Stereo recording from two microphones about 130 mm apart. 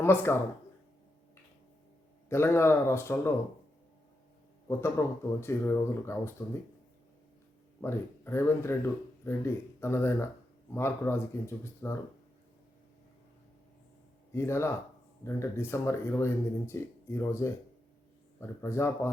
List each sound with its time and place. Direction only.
0.0 s speech: 15° left (ahead or behind)
2.3 s speech: 20° left (ahead or behind)
4.7 s speech: 20° left (ahead or behind)
7.8 s speech: 20° left (ahead or behind)
14.3 s speech: 20° left (ahead or behind)